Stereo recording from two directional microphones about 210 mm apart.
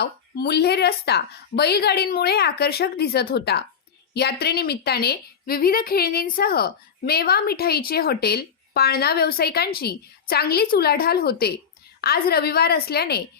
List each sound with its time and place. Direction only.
0.0 s a woman's voice: 50° left (ahead or behind)